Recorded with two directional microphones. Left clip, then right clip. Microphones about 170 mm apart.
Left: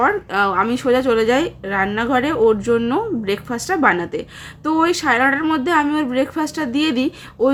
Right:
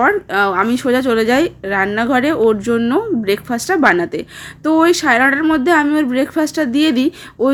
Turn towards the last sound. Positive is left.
turn(degrees=-25)  # may be behind; listen again after turning